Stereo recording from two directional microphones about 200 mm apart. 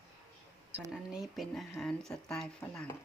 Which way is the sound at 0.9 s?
Centre (ahead or behind).